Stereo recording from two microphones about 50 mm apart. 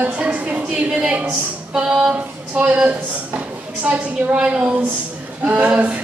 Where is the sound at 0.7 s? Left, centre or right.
Right.